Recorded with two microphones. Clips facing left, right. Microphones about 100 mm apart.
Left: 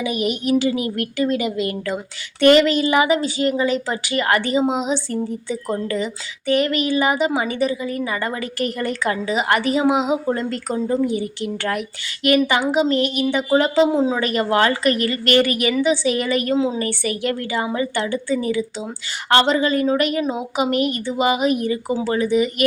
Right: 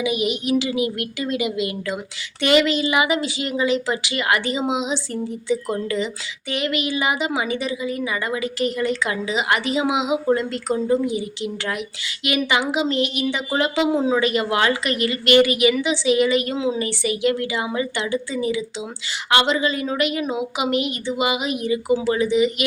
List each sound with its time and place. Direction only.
0.0 s a woman's voice: 45° left (ahead or behind)